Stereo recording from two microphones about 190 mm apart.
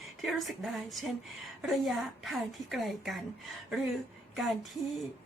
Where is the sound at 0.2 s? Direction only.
Centre (ahead or behind).